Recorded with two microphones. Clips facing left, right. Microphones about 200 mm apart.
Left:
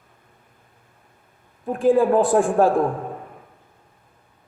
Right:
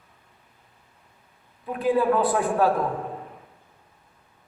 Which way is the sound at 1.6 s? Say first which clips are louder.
Left 5 dB; 45° left (ahead or behind).